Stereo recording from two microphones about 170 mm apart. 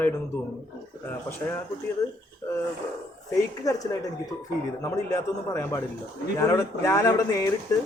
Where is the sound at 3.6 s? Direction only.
20° left (ahead or behind).